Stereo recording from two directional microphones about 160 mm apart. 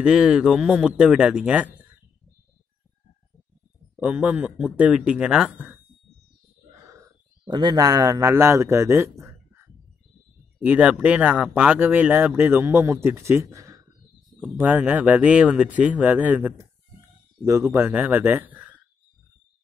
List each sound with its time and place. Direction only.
0.0 s speech: 5° right (ahead or behind)
3.9 s speech: 10° right (ahead or behind)
7.4 s speech: 30° right (ahead or behind)
10.6 s speech: 10° right (ahead or behind)